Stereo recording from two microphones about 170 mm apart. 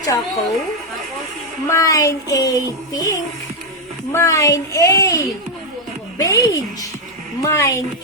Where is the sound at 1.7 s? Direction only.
15° left (ahead or behind).